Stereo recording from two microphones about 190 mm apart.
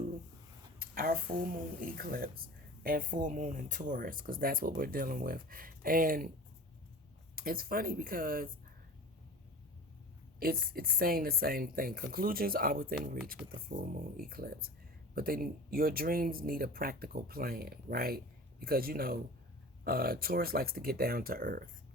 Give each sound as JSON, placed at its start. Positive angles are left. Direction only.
{"t": 0.8, "sound": "a sound", "side_deg": -50}
{"t": 1.8, "sound": "speech", "side_deg": -50}
{"t": 7.3, "sound": "speech", "side_deg": -50}
{"t": 10.4, "sound": "speech", "side_deg": -50}